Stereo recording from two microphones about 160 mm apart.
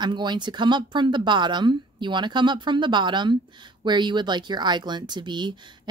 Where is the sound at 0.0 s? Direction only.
30° right (ahead or behind).